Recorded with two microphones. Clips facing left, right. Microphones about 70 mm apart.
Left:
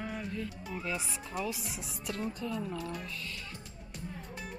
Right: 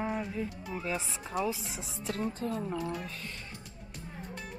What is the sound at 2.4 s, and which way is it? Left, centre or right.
Speech, right.